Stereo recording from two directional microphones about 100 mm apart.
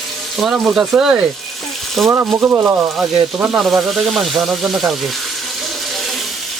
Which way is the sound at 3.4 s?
10° right (ahead or behind).